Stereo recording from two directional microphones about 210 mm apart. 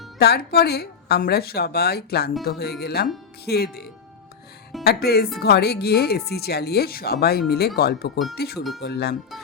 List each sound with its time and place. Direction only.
0.2 s speech: 50° left (ahead or behind)